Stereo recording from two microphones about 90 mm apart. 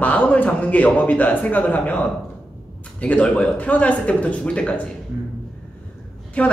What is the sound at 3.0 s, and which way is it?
A man's voice, 15° left (ahead or behind).